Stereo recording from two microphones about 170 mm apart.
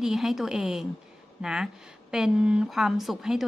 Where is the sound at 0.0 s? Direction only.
Centre (ahead or behind).